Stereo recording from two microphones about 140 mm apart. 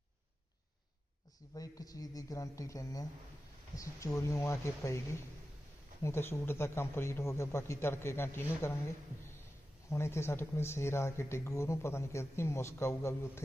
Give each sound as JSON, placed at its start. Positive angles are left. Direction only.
{"t": 1.5, "sound": "speech", "side_deg": 25}
{"t": 6.0, "sound": "a man's voice", "side_deg": 20}
{"t": 9.9, "sound": "speech", "side_deg": 20}